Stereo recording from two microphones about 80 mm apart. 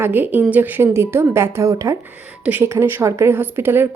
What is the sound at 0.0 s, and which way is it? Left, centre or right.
Speech, right.